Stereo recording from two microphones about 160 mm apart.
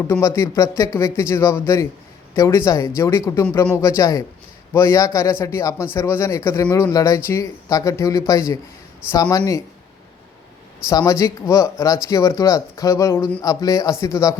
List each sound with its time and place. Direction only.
0.1 s a man's voice: 20° left (ahead or behind)
10.8 s speech: 20° left (ahead or behind)